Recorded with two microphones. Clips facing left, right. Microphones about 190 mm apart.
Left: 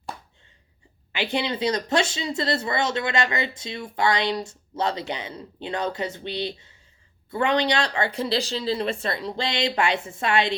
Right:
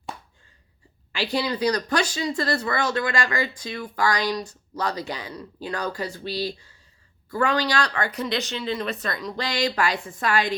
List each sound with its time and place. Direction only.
1.1 s speech: 25° left (ahead or behind)